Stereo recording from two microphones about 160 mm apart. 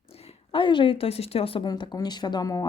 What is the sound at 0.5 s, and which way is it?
Speech, 30° left (ahead or behind).